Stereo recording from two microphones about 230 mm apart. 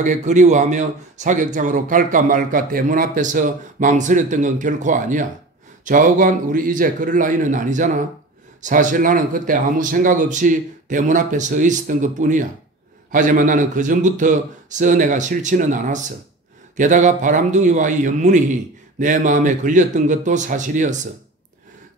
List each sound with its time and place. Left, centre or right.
0.0 s speech: right